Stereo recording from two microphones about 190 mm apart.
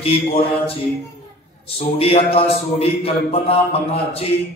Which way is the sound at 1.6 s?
30° left (ahead or behind).